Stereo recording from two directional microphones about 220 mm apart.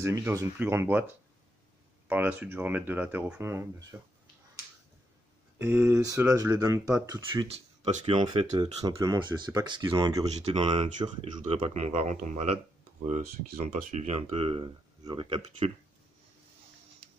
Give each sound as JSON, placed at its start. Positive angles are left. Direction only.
{"t": 0.0, "sound": "speech", "side_deg": -10}
{"t": 2.0, "sound": "speech", "side_deg": -5}
{"t": 5.6, "sound": "speech", "side_deg": -10}
{"t": 10.3, "sound": "speech", "side_deg": -30}
{"t": 13.7, "sound": "speech", "side_deg": -35}